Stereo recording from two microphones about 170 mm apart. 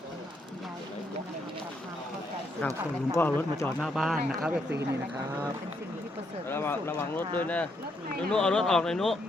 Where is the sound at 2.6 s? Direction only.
10° left (ahead or behind).